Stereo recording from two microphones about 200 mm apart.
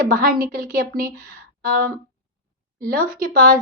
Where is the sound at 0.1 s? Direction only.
45° right (ahead or behind).